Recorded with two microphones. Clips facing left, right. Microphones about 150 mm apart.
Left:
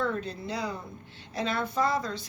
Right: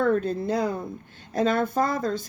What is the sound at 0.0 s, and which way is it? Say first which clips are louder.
Speech: right 8 dB; 50° right (ahead or behind).